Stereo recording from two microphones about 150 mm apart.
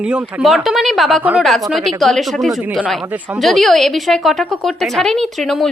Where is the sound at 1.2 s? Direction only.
10° right (ahead or behind).